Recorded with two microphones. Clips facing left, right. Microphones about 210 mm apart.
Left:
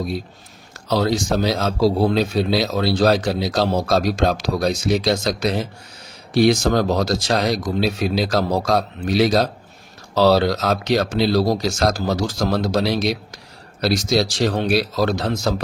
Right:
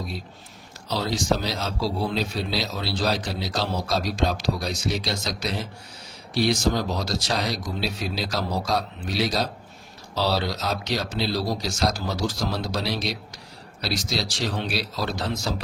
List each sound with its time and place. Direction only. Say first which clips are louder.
1.1 s a man's voice: left 5 dB; 50° left (ahead or behind)